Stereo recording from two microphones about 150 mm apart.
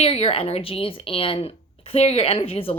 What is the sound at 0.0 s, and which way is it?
A woman's voice, 40° left (ahead or behind).